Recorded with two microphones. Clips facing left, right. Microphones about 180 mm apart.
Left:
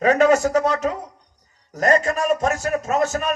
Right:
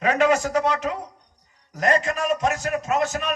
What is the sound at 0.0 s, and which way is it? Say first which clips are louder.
A man's voice: left 4 dB; 45° left (ahead or behind).